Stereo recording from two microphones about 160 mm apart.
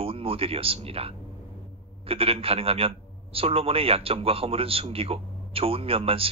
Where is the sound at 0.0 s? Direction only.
35° right (ahead or behind).